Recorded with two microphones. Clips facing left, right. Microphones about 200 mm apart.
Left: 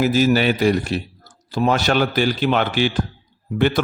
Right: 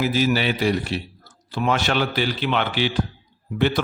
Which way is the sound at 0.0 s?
45° left (ahead or behind).